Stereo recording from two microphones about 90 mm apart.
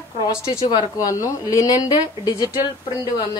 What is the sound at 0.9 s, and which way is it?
Speech, 40° left (ahead or behind).